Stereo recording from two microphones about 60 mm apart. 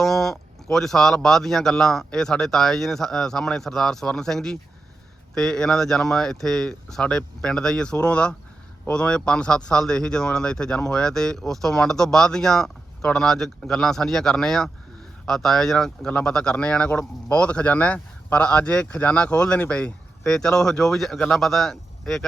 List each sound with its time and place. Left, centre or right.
0.0 s a man's voice: centre